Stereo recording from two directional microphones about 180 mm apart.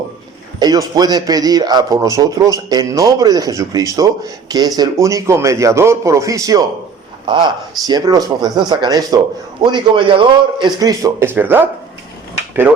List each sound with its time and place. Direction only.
0.6 s a man's voice: 20° right (ahead or behind)